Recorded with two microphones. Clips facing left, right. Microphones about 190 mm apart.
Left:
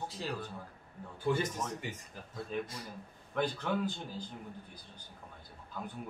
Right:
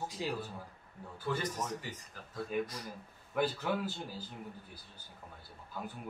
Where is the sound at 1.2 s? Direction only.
25° left (ahead or behind).